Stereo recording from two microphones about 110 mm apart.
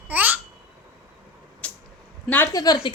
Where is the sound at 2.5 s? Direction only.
35° left (ahead or behind).